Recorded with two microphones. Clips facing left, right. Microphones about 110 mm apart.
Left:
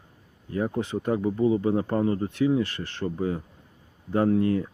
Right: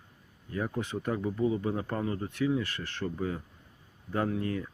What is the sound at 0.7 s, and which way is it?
A man's voice, 25° left (ahead or behind).